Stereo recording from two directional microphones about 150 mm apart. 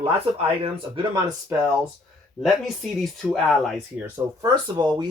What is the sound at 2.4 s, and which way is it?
Speech, centre (ahead or behind).